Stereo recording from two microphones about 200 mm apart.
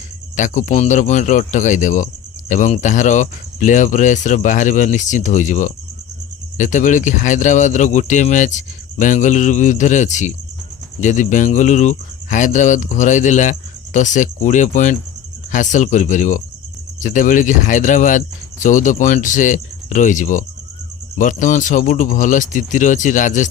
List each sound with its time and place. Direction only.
0.3 s speech: 40° left (ahead or behind)